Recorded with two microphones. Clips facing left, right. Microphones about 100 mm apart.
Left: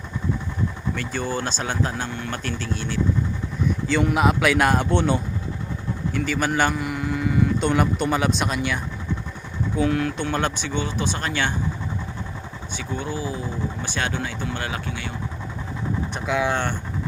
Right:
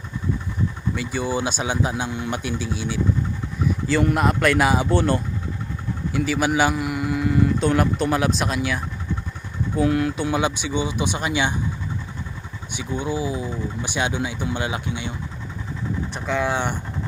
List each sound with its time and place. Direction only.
0.9 s speech: 10° right (ahead or behind)
12.7 s speech: 15° right (ahead or behind)
16.1 s vehicle: 5° left (ahead or behind)
16.5 s speech: 15° right (ahead or behind)